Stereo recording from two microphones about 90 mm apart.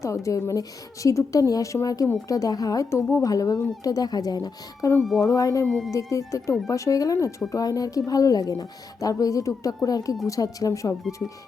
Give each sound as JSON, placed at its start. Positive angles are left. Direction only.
{"t": 0.0, "sound": "a woman's voice", "side_deg": 35}
{"t": 2.9, "sound": "a woman's voice", "side_deg": 30}